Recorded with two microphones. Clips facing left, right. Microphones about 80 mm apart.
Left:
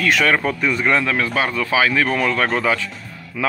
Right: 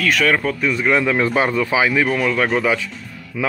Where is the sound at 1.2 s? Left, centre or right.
Right.